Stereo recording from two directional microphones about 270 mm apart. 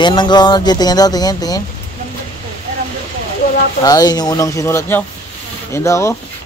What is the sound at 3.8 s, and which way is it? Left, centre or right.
Speech, centre.